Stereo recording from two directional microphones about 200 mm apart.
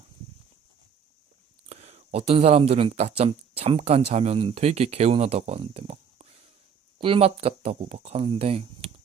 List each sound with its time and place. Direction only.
1.7 s speech: 35° right (ahead or behind)